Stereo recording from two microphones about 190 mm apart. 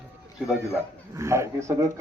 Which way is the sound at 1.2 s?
15° right (ahead or behind).